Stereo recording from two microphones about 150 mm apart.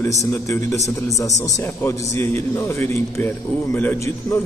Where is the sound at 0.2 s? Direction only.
20° left (ahead or behind).